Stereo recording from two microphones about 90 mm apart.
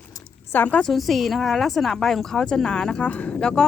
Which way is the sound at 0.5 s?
15° left (ahead or behind).